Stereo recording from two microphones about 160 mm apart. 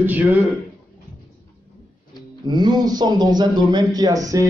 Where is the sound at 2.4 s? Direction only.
25° right (ahead or behind).